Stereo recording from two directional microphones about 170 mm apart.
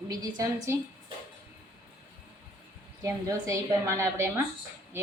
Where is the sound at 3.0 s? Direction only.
20° right (ahead or behind).